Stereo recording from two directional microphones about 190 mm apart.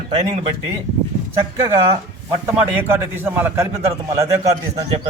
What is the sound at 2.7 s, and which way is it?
A man's voice, 10° right (ahead or behind).